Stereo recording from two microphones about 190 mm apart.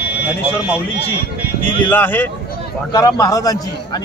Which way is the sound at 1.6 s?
10° left (ahead or behind).